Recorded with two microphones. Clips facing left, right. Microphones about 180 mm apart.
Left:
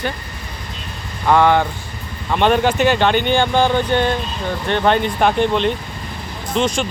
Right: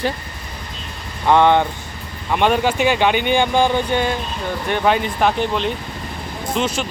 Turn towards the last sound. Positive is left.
turn(degrees=-5)  # may be behind; listen again after turning